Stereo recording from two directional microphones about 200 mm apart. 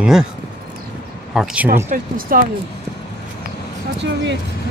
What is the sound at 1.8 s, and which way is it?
Speech, 45° right (ahead or behind).